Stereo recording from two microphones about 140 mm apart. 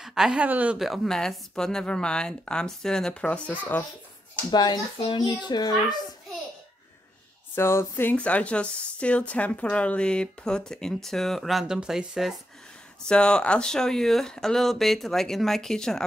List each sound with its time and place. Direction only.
0.0 s a woman's voice: 5° right (ahead or behind)
0.7 s speech: centre (ahead or behind)
4.5 s a child's voice: 30° left (ahead or behind)
7.5 s speech: 15° left (ahead or behind)